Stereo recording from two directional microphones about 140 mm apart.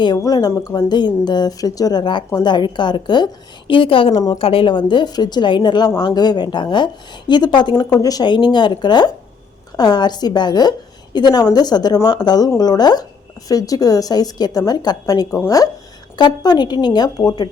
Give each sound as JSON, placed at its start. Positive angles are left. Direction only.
{"t": 0.0, "sound": "a woman's voice", "side_deg": 30}